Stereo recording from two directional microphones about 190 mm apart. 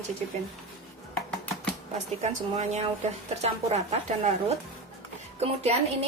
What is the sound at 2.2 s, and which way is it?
A woman's voice, 35° right (ahead or behind).